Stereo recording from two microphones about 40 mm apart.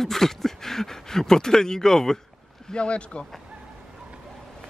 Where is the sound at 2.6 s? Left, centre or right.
Left.